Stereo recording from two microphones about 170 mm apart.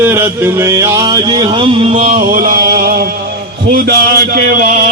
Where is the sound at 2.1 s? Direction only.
55° right (ahead or behind).